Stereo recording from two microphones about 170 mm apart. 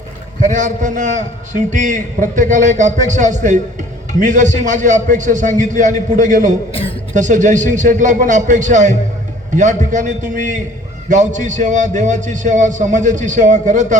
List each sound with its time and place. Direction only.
0.4 s a man's voice: 50° right (ahead or behind)